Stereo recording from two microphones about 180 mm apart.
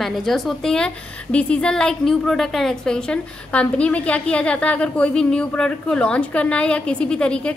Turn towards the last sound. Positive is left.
turn(degrees=5)  # may be behind; listen again after turning